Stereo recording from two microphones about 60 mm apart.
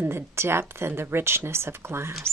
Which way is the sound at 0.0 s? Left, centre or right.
Right.